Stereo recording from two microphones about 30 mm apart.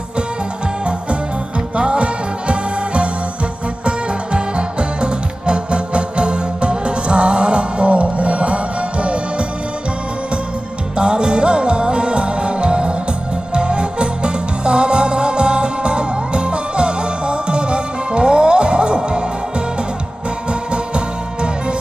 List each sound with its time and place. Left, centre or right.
1.7 s music: right
7.9 s music: right
10.9 s music: right